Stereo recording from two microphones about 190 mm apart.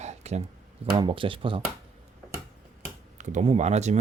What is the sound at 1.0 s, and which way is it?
Speech, 25° right (ahead or behind).